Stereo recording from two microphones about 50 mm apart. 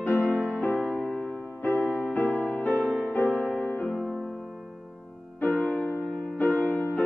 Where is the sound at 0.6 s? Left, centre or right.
Left.